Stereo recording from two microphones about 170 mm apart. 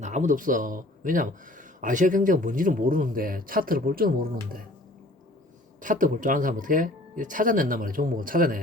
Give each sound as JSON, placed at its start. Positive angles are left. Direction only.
{"t": 0.0, "sound": "speech", "side_deg": -45}
{"t": 5.8, "sound": "speech", "side_deg": -50}